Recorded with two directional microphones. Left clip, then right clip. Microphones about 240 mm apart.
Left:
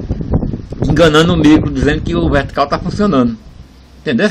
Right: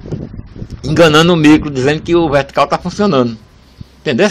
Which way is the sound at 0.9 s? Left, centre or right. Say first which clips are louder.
Right 2 dB; right.